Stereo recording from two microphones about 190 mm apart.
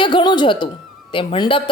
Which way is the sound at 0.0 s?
25° left (ahead or behind).